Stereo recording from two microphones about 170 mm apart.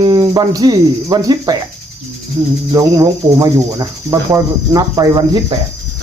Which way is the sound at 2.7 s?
20° right (ahead or behind).